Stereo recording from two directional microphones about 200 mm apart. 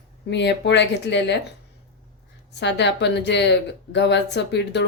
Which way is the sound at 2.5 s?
60° left (ahead or behind).